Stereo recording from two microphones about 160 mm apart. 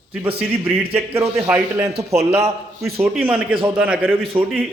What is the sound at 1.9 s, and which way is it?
Speech, 40° right (ahead or behind).